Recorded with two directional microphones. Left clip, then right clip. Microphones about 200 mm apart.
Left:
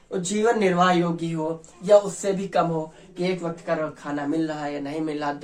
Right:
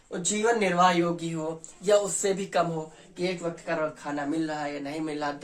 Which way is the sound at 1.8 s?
25° right (ahead or behind).